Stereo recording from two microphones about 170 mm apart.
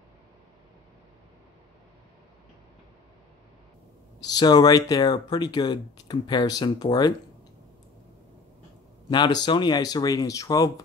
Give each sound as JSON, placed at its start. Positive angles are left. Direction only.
{"t": 4.2, "sound": "speech", "side_deg": 25}
{"t": 9.1, "sound": "speech", "side_deg": 25}